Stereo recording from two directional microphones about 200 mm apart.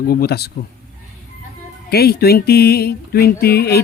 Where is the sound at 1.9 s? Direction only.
50° left (ahead or behind).